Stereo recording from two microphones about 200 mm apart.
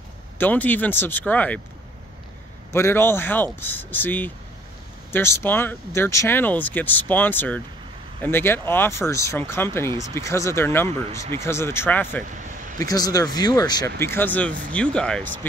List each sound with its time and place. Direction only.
0.4 s speech: 10° left (ahead or behind)
2.7 s speech: 10° left (ahead or behind)